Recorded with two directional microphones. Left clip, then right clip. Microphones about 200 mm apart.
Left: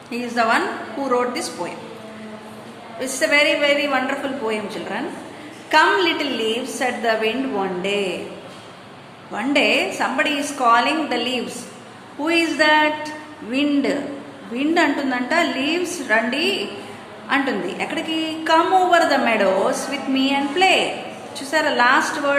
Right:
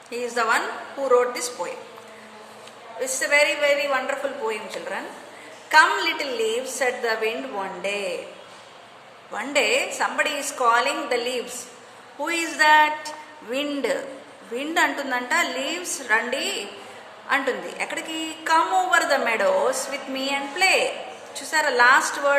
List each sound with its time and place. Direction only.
0.1 s a woman's voice: 20° right (ahead or behind)
3.0 s a woman's voice: 20° right (ahead or behind)
9.3 s a woman's voice: 25° right (ahead or behind)